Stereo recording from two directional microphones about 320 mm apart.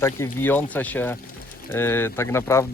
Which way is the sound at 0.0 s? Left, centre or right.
Centre.